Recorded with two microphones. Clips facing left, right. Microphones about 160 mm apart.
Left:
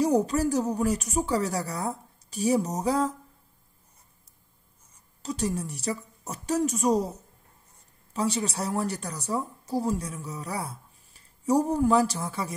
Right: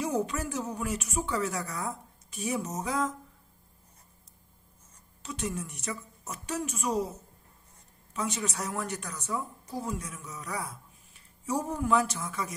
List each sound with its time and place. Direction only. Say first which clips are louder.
0.0 s a woman's voice: left 7 dB; 35° left (ahead or behind)
5.2 s a woman's voice: left 6 dB; 35° left (ahead or behind)